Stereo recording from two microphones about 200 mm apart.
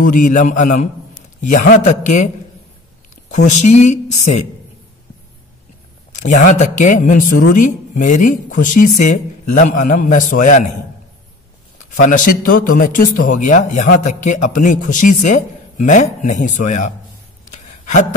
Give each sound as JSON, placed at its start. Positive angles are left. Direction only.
{"t": 0.0, "sound": "speech", "side_deg": 40}
{"t": 3.3, "sound": "speech", "side_deg": 35}
{"t": 6.2, "sound": "speech", "side_deg": 40}
{"t": 11.8, "sound": "speech", "side_deg": 40}
{"t": 17.6, "sound": "a sound", "side_deg": 40}